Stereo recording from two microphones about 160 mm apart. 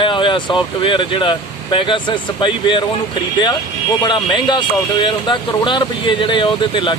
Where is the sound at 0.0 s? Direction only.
30° left (ahead or behind).